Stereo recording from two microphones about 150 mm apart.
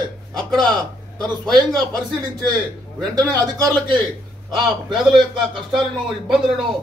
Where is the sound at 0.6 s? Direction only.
5° left (ahead or behind).